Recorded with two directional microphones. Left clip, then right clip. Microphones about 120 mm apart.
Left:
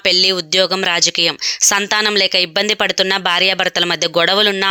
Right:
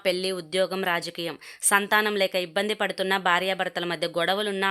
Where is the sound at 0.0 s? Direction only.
25° left (ahead or behind).